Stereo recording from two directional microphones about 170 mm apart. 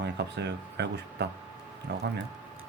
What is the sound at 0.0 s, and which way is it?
Speech, 85° right.